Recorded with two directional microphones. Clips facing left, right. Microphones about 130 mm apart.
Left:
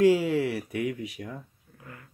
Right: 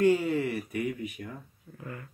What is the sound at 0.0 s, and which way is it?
Speech, 90° left.